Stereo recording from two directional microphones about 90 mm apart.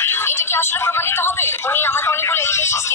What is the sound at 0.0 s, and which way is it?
A woman's voice, 25° left (ahead or behind).